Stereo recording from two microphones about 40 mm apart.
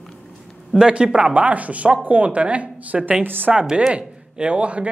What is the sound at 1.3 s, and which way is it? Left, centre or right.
Speech, right.